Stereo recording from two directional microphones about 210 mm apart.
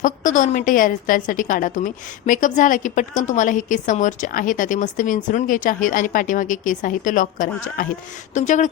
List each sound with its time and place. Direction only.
0.0 s a woman's voice: 40° left (ahead or behind)